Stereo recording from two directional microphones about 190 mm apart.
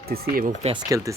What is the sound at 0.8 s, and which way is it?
Speech, 20° right (ahead or behind).